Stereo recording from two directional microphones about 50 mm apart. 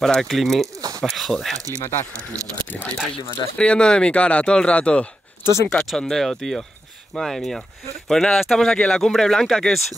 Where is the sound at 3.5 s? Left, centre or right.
Left.